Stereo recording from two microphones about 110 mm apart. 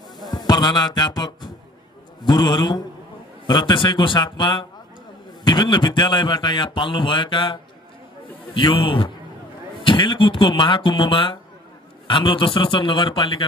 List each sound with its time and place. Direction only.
0.3 s music: 40° left (ahead or behind)
2.2 s a man's voice: 40° left (ahead or behind)
8.5 s a man's voice: 50° left (ahead or behind)